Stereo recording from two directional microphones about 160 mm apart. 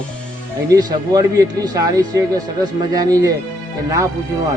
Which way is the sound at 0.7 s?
25° right (ahead or behind).